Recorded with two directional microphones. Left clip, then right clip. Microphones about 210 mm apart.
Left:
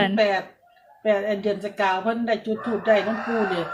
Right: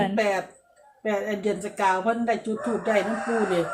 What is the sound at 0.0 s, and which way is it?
Speech, 10° left (ahead or behind).